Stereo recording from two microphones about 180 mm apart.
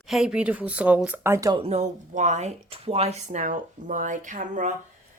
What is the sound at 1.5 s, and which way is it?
Speech, 35° right (ahead or behind).